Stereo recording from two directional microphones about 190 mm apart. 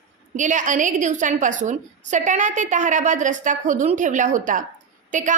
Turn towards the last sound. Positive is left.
turn(degrees=-40)  # may be behind; listen again after turning